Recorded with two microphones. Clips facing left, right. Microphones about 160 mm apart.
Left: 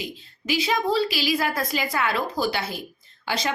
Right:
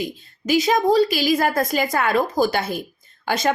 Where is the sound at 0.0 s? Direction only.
45° right (ahead or behind).